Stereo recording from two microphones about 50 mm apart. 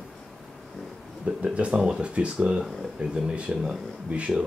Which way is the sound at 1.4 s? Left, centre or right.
Right.